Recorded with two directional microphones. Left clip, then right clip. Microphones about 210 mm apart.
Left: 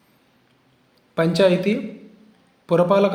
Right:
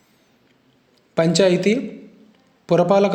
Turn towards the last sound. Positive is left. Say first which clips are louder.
# right 1 dB
turn(degrees=-20)  # may be behind; listen again after turning